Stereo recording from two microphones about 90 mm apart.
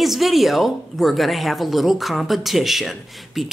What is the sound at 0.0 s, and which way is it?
Speech, centre (ahead or behind).